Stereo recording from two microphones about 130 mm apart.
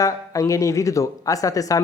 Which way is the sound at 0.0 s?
25° left (ahead or behind).